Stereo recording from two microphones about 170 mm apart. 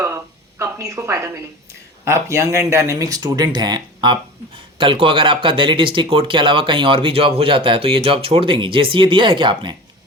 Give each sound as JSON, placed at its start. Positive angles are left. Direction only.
{"t": 0.6, "sound": "a woman's voice", "side_deg": -15}